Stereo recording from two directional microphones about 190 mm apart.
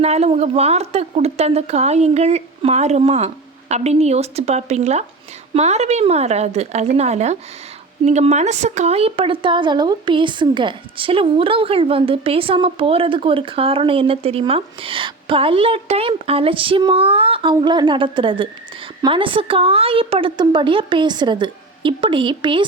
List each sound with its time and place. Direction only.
0.0 s a woman's voice: 35° right (ahead or behind)